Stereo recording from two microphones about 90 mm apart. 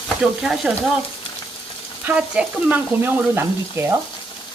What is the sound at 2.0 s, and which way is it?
Frying, 15° right (ahead or behind).